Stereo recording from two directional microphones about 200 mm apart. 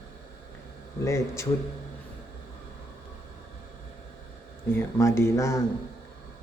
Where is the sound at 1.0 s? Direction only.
15° left (ahead or behind).